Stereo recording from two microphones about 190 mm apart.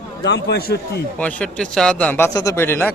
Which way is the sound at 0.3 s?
60° left (ahead or behind).